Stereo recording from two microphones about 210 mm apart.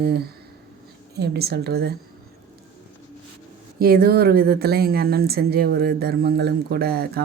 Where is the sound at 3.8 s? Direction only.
45° right (ahead or behind).